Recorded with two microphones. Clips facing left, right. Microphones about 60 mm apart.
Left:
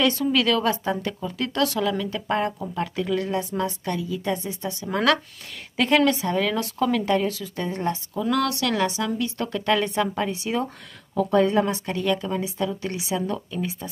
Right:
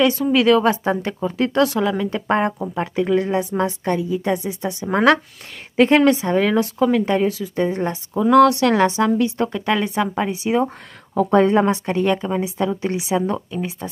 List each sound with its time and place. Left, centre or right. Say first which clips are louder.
0.0 s speech: right 5 dB; centre
0.8 s speech: right 5 dB; right
9.4 s speech: right 3 dB; centre
11.1 s speech: right 5 dB; right